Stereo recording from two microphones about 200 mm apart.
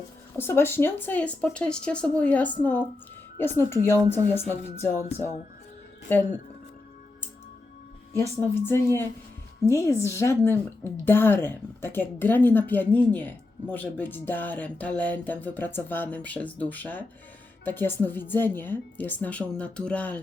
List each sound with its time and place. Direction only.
0.3 s a woman's voice: 10° left (ahead or behind)
6.1 s a woman's voice: 10° left (ahead or behind)
8.2 s a woman's voice: 10° left (ahead or behind)